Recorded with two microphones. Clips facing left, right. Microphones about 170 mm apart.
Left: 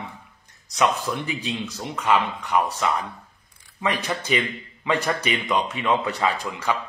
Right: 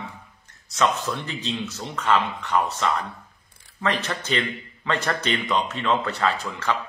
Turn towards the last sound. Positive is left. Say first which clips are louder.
# even
turn(degrees=15)  # may be behind; listen again after turning